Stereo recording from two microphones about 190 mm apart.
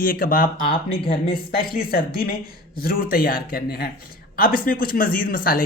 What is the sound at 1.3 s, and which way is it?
Speech, 50° left (ahead or behind).